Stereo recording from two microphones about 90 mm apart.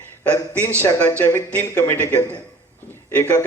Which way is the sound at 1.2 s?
30° left (ahead or behind).